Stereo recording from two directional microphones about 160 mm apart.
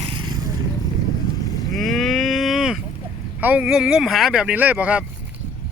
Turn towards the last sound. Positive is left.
turn(degrees=-5)  # may be behind; listen again after turning